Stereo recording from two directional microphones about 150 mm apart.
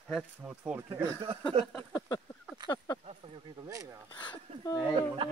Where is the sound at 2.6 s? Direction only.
30° left (ahead or behind).